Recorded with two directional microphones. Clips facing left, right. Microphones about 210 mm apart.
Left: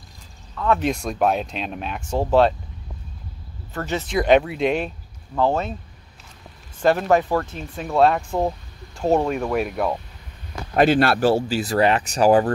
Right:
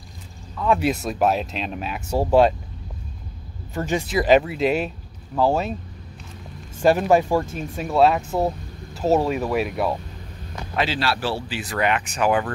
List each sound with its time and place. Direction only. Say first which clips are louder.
0.6 s speech: even; 10° right (ahead or behind)
3.7 s speech: right 1 dB; 15° right (ahead or behind)
4.2 s speech: left 1 dB; centre (ahead or behind)
6.8 s speech: right 1 dB; 10° right (ahead or behind)
10.8 s speech: left 8 dB; 55° left (ahead or behind); by 12.5 s 35° left (ahead or behind)